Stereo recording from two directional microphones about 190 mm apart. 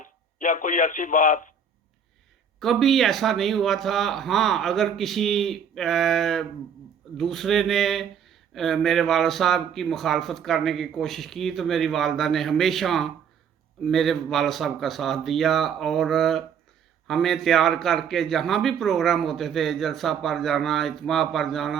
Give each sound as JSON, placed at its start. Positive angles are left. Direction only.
{"t": 0.3, "sound": "a man's voice", "side_deg": 45}
{"t": 2.6, "sound": "speech", "side_deg": 0}